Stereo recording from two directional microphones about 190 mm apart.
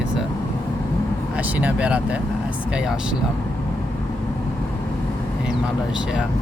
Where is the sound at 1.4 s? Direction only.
5° right (ahead or behind).